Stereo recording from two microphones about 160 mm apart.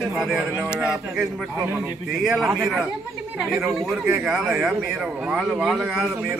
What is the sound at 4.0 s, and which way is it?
A man's voice, 15° right (ahead or behind).